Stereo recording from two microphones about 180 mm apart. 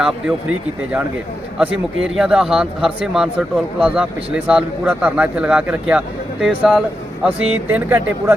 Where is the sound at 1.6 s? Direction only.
5° right (ahead or behind).